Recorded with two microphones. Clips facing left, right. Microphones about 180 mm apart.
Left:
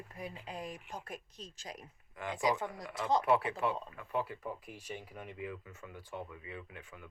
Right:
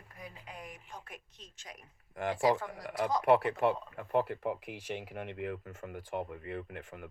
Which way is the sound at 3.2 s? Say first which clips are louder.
Right 4 dB; 60° right (ahead or behind).